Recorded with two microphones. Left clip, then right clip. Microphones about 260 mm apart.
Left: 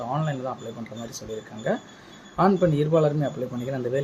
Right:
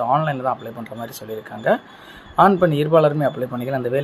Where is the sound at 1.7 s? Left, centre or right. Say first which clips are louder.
Right 9 dB; centre.